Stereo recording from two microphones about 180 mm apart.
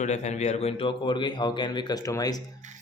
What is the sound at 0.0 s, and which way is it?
A man's voice, 40° left (ahead or behind).